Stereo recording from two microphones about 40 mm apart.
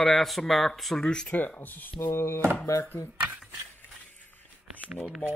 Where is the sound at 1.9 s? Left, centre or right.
Left.